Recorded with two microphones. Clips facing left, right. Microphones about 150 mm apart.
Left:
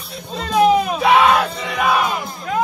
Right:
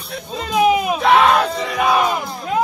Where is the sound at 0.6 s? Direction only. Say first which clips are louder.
Left 1 dB; 5° right (ahead or behind).